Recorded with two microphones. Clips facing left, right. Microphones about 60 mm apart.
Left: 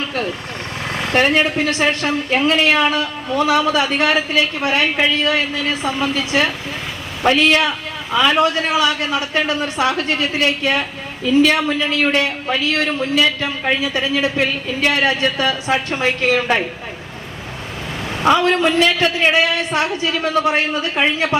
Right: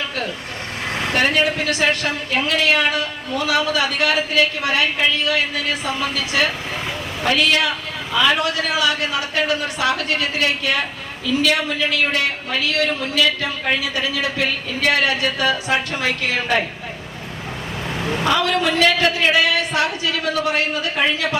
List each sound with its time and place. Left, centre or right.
1.1 s a woman's voice: left
18.3 s a woman's voice: left